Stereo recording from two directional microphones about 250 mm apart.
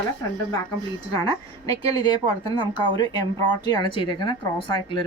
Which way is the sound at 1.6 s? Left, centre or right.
Centre.